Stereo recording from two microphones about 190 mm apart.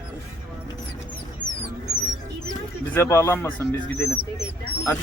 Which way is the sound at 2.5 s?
15° left (ahead or behind).